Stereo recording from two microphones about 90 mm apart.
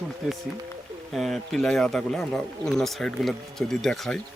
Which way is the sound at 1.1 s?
Centre (ahead or behind).